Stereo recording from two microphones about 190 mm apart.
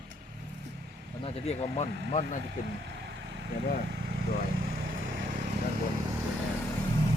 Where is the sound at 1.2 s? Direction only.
30° left (ahead or behind).